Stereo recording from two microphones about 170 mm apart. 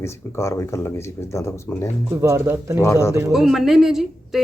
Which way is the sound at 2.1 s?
15° right (ahead or behind).